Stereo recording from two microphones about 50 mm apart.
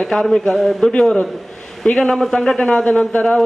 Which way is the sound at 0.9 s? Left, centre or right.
Centre.